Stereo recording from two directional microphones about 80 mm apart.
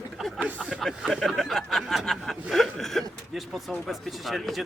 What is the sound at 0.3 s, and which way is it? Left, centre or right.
Speech, centre.